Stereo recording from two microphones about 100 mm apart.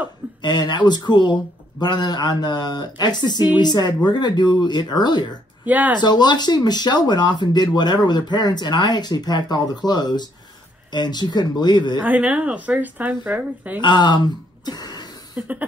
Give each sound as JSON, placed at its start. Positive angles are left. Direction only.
{"t": 0.4, "sound": "speech", "side_deg": 45}
{"t": 5.7, "sound": "speech", "side_deg": -15}
{"t": 5.9, "sound": "speech", "side_deg": 45}
{"t": 12.0, "sound": "speech", "side_deg": -15}
{"t": 13.7, "sound": "speech", "side_deg": 50}
{"t": 15.3, "sound": "a sound", "side_deg": -15}